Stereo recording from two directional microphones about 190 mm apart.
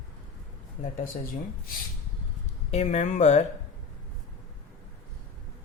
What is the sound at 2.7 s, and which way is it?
Speech, 35° left (ahead or behind).